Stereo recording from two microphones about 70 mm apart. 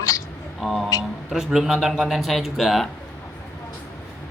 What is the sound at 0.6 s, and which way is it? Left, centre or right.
Speech, centre.